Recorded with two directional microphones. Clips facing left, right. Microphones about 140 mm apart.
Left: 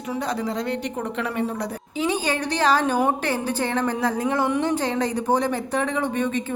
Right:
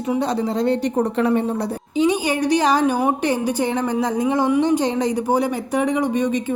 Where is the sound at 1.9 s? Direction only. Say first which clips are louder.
Right 5 dB; 15° right (ahead or behind).